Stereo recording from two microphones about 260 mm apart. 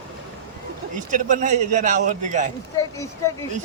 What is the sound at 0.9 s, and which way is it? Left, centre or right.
A man's voice, right.